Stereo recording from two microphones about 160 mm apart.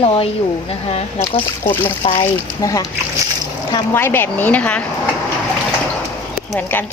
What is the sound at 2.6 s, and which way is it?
Speech, 20° left (ahead or behind).